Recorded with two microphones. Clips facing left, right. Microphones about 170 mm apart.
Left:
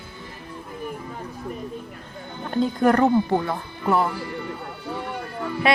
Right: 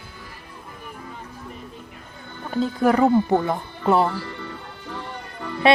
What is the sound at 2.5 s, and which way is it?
Speech, 5° right (ahead or behind).